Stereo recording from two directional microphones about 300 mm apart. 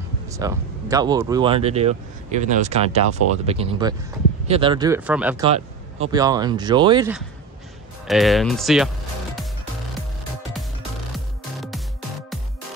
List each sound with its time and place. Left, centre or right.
0.3 s speech: centre
5.4 s speech: centre
8.1 s music: centre